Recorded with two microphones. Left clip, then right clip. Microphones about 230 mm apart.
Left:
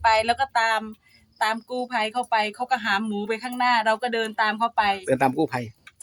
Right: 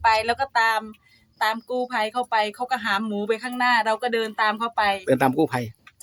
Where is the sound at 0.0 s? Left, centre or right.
Centre.